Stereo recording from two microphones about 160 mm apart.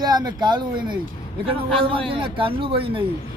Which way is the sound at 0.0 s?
25° right (ahead or behind).